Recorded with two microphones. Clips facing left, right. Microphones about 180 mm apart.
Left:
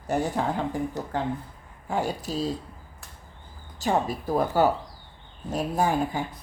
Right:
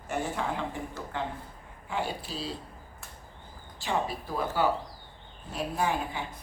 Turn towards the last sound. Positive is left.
turn(degrees=45)  # may be behind; listen again after turning